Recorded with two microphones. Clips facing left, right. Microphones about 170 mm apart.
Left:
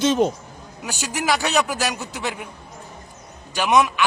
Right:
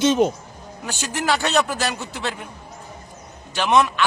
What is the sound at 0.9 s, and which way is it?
Speech, 10° left (ahead or behind).